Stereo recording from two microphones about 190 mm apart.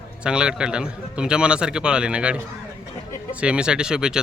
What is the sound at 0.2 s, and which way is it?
A man's voice, 5° right (ahead or behind).